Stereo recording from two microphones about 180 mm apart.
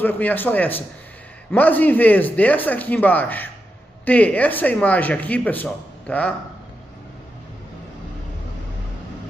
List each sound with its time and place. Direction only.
0.0 s speech: 10° left (ahead or behind)